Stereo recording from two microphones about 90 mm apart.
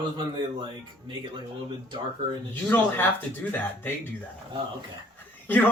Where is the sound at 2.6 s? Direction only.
20° left (ahead or behind).